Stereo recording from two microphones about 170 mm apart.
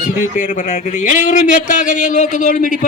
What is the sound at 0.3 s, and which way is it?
A man's voice, 50° left (ahead or behind).